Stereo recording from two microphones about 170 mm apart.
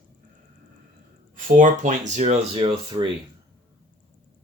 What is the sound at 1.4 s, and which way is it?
Speech, 50° right (ahead or behind).